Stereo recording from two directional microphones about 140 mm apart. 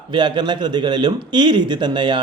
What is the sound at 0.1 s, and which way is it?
A man's voice, 35° right (ahead or behind).